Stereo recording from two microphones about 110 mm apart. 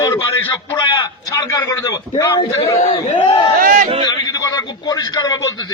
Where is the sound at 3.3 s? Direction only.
45° left (ahead or behind).